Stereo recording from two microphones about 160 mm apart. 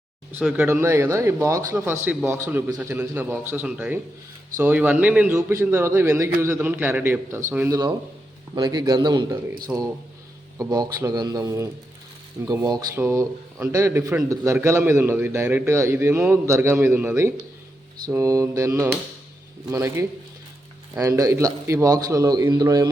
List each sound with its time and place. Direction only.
0.3 s a man's voice: 5° right (ahead or behind); by 12.9 s 25° right (ahead or behind)
12.9 s a man's voice: 15° right (ahead or behind)